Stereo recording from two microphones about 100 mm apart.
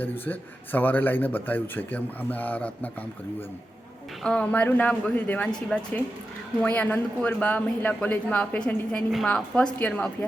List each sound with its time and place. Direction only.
0.0 s speech: 20° left (ahead or behind)
4.2 s speech: 10° left (ahead or behind)